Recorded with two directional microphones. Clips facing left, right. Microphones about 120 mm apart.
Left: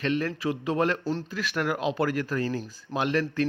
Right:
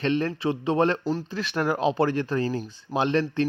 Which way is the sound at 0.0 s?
30° right (ahead or behind).